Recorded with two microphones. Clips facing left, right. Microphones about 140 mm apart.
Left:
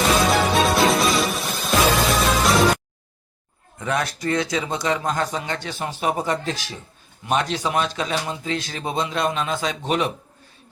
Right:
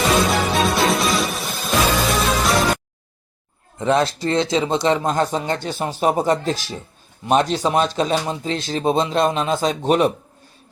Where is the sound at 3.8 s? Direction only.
30° right (ahead or behind).